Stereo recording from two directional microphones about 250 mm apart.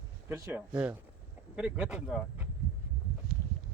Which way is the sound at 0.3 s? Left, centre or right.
Centre.